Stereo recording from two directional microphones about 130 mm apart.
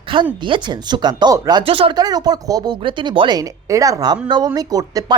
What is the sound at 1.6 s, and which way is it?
Speech, 45° right (ahead or behind).